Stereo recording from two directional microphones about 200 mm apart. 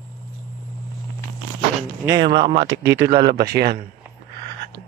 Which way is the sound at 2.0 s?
20° right (ahead or behind).